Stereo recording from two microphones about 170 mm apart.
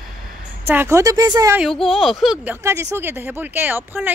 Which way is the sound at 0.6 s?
15° right (ahead or behind).